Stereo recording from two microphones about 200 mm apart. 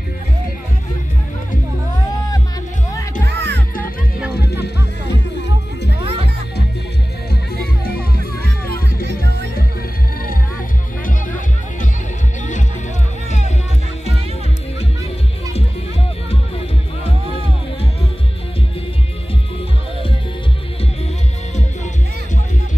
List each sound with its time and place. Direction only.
3.3 s music: 60° right (ahead or behind)
4.2 s music: 5° right (ahead or behind)
5.9 s music: 30° right (ahead or behind)
8.7 s music: 50° left (ahead or behind)
11.1 s music: 40° left (ahead or behind)